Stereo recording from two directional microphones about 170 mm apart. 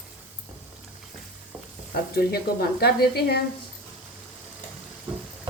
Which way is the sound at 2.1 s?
65° left (ahead or behind).